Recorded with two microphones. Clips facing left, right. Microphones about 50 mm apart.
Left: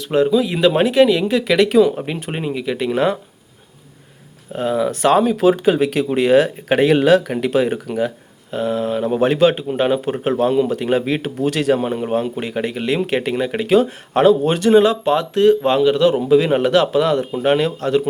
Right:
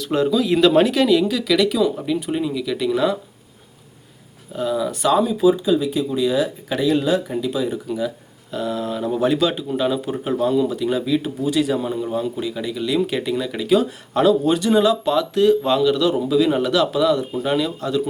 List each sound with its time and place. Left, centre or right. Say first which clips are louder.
0.0 s speech: left 3 dB; left
4.5 s speech: left 3 dB; left
6.9 s speech: left 6 dB; left
8.4 s speech: left 4 dB; left